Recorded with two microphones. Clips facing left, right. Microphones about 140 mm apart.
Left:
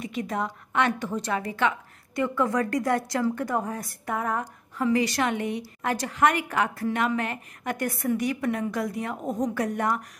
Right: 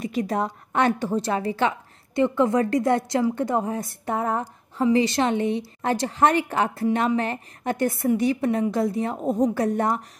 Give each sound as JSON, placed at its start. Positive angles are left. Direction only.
{"t": 0.0, "sound": "a woman's voice", "side_deg": -35}